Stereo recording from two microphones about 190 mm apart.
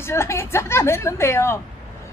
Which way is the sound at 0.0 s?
15° left (ahead or behind).